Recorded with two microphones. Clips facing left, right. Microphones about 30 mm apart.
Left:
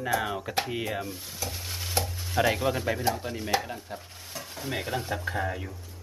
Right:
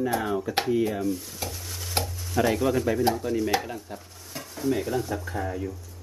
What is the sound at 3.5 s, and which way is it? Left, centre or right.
Speech, centre.